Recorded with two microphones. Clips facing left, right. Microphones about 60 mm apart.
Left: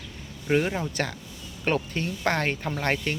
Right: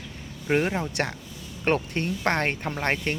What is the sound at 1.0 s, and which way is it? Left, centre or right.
Speech, right.